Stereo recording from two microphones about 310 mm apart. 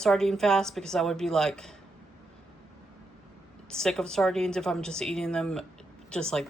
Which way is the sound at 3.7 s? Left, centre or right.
Centre.